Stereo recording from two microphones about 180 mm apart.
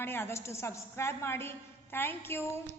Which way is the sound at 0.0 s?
10° left (ahead or behind).